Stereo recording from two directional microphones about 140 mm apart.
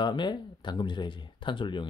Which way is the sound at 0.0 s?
35° left (ahead or behind).